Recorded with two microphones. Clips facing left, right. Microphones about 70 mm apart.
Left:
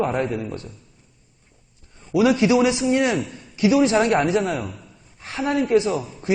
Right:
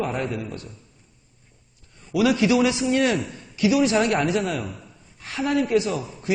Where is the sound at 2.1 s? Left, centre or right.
Left.